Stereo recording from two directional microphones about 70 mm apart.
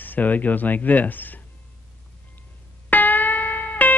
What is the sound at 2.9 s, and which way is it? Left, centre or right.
Music, left.